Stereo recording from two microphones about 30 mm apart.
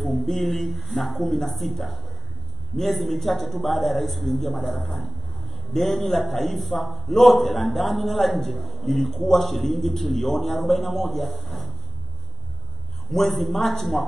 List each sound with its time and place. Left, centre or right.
0.0 s a man's voice: centre
13.1 s a man's voice: centre